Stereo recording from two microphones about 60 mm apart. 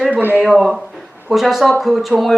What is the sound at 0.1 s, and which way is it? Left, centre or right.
Speech, right.